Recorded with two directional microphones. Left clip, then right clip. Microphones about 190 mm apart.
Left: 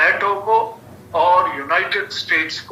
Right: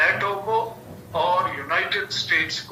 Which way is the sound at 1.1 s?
45° left (ahead or behind).